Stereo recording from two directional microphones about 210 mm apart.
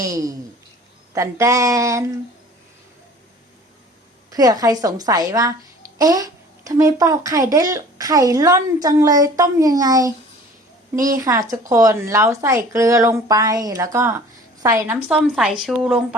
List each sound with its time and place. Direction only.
0.0 s speech: 15° right (ahead or behind)
4.3 s speech: 15° right (ahead or behind)
11.2 s a woman's voice: 15° right (ahead or behind); by 16.0 s centre (ahead or behind)